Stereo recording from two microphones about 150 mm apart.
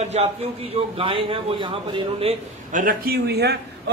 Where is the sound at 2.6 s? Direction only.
65° right (ahead or behind); by 3.6 s 90° right.